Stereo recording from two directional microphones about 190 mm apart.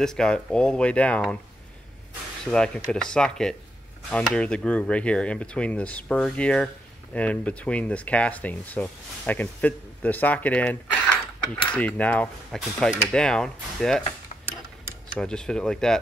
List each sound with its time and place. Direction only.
0.0 s speech: 5° left (ahead or behind)
2.5 s speech: 5° left (ahead or behind)
15.1 s speech: 5° left (ahead or behind)